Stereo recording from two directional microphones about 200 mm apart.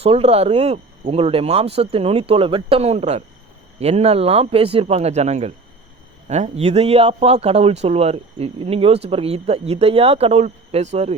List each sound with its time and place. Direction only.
0.0 s speech: 30° right (ahead or behind)